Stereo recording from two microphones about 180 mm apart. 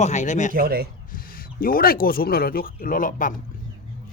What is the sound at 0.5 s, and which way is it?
Speech, 55° right (ahead or behind).